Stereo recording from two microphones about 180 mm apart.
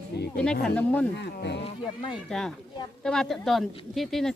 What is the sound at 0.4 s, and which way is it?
Speech, 70° left (ahead or behind).